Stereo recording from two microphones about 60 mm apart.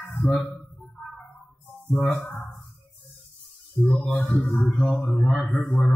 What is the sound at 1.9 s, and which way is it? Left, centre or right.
Speech, left.